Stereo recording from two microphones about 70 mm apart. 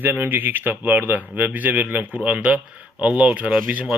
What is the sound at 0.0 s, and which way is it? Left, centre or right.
Speech, right.